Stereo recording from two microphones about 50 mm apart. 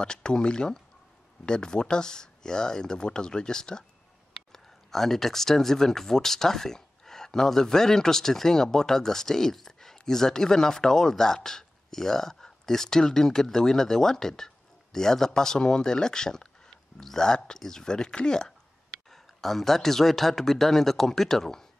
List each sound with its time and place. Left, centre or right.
0.0 s speech: centre